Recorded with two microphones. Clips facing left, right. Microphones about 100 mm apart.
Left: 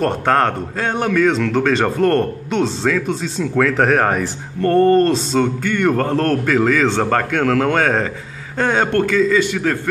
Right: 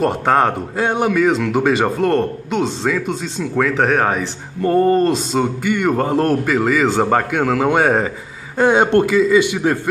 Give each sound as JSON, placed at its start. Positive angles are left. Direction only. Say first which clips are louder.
{"t": 0.0, "sound": "speech", "louder": "right 1 dB", "side_deg": -5}